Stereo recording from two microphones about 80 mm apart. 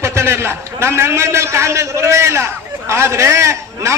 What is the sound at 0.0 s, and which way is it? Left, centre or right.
A man's voice, right.